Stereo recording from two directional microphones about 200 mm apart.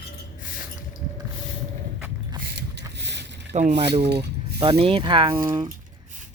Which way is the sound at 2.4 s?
55° right (ahead or behind).